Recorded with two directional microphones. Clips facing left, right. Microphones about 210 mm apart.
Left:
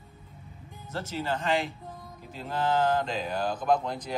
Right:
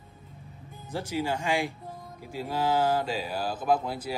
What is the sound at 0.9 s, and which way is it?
Speech, 15° right (ahead or behind).